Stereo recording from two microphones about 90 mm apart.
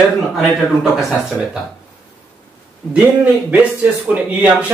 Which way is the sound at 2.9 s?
15° right (ahead or behind).